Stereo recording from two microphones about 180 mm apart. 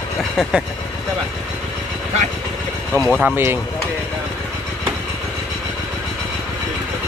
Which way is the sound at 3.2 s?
10° right (ahead or behind).